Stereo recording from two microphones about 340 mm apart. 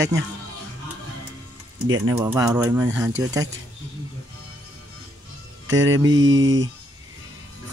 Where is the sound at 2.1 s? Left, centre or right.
Centre.